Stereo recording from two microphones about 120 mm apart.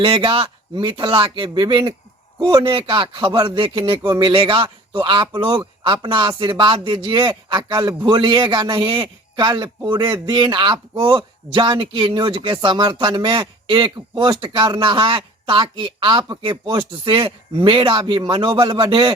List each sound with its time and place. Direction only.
0.0 s speech: 40° right (ahead or behind)